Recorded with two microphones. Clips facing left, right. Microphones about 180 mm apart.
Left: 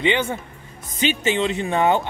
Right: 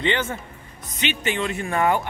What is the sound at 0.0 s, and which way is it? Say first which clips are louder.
Speech: left 3 dB; 15° left (ahead or behind).